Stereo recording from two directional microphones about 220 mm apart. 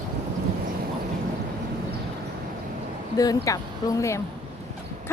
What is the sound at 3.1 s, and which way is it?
A woman's voice, 15° left (ahead or behind).